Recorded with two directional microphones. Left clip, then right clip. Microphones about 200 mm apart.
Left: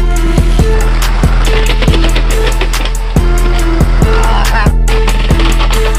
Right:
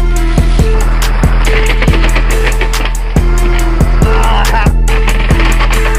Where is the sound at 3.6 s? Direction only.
Centre (ahead or behind).